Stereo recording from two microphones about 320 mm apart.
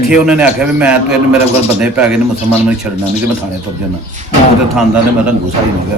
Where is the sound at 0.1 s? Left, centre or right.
Centre.